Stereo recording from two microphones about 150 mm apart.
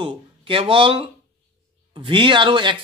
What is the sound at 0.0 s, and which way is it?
Speech, 35° right (ahead or behind).